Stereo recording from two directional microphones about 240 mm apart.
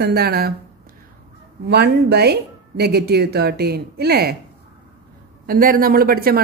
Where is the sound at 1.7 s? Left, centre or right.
Right.